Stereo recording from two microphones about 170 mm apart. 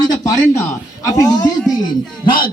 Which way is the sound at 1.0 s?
20° left (ahead or behind).